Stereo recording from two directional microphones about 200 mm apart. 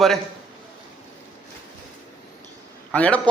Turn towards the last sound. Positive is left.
turn(degrees=5)  # may be behind; listen again after turning